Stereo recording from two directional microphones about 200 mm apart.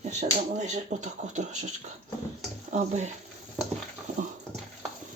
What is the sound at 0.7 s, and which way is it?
Speech, 35° right (ahead or behind).